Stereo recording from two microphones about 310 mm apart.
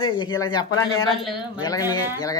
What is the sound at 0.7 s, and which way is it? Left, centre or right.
Speech, left.